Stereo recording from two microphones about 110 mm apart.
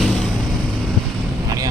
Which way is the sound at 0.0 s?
Centre (ahead or behind).